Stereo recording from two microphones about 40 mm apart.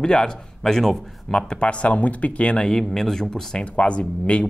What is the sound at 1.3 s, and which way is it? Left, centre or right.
Speech, centre.